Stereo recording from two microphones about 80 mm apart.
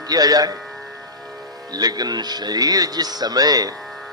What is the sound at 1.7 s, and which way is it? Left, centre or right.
Speech, right.